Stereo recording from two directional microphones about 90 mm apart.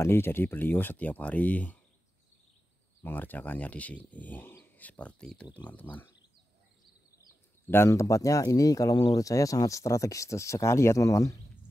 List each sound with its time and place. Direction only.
0.0 s speech: 25° left (ahead or behind)
3.0 s speech: 20° left (ahead or behind)
7.2 s speech: 25° left (ahead or behind)